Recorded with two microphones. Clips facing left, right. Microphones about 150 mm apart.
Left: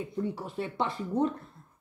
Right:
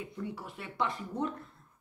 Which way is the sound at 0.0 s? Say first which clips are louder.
Left 6 dB; 30° left (ahead or behind).